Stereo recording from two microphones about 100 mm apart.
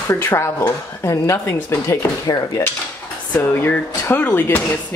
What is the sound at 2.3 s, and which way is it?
Cutlery, 40° left (ahead or behind).